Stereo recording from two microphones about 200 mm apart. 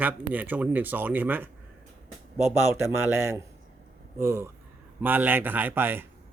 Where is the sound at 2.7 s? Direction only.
10° right (ahead or behind).